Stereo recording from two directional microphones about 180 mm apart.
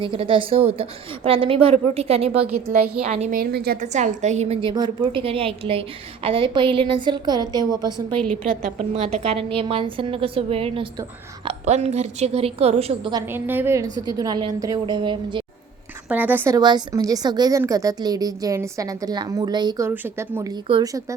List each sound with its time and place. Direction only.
0.0 s a woman's voice: 30° right (ahead or behind)
2.7 s a woman's voice: 45° right (ahead or behind)
3.3 s a woman's voice: 60° right (ahead or behind)
3.9 s a woman's voice: 40° right (ahead or behind); by 8.0 s 20° right (ahead or behind)
9.0 s a woman's voice: 35° right (ahead or behind)
13.1 s a woman's voice: 10° right (ahead or behind); by 15.4 s 25° right (ahead or behind)
16.0 s a woman's voice: 10° right (ahead or behind)
16.6 s a woman's voice: 25° right (ahead or behind)